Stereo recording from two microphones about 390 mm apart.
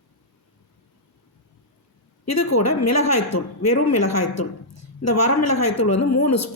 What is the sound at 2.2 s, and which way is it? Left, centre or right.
A man's voice, left.